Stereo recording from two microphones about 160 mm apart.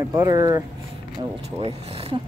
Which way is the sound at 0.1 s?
20° right (ahead or behind).